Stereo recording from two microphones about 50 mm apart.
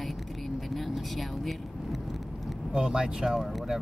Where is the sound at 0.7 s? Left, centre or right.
Centre.